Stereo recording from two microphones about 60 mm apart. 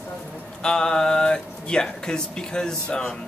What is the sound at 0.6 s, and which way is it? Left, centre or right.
Speech, centre.